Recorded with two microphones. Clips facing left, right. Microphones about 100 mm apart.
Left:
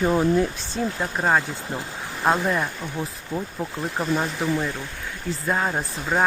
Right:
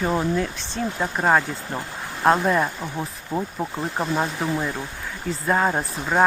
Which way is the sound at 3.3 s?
30° right (ahead or behind).